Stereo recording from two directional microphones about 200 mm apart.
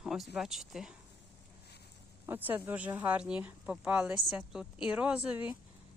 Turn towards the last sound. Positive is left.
turn(degrees=-5)  # may be behind; listen again after turning